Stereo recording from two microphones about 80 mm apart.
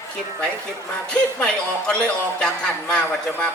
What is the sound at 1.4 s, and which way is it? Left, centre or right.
A man's voice, centre.